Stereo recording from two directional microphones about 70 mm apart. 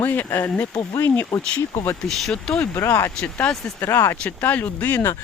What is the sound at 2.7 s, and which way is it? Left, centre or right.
Speech, left.